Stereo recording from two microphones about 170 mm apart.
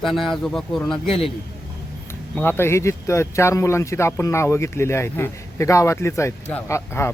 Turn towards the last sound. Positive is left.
turn(degrees=15)  # may be behind; listen again after turning